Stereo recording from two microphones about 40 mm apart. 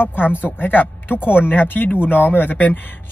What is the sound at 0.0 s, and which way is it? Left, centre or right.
A man's voice, left.